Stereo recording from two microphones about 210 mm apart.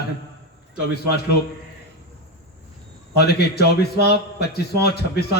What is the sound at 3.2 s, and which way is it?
A man's voice, 50° left (ahead or behind).